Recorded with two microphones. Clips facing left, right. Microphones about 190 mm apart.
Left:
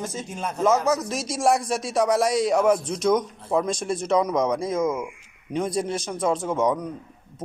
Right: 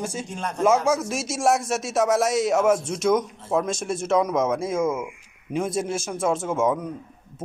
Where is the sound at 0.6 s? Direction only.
10° right (ahead or behind).